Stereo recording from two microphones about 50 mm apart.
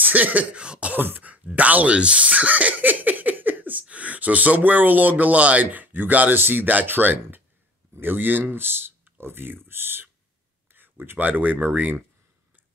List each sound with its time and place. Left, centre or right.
0.0 s speech: right
0.9 s speech: right
1.3 s speech: right
2.0 s giggle: right
3.9 s speech: right